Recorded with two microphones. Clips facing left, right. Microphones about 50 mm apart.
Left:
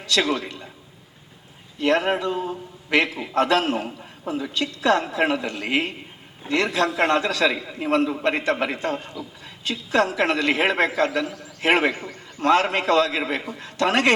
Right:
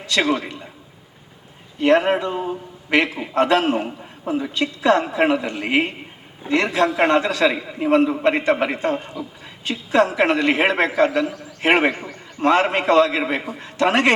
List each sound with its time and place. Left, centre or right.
0.0 s a man's voice: right
1.8 s a man's voice: right